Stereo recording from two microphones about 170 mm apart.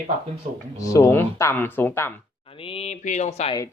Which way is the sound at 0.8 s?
20° left (ahead or behind).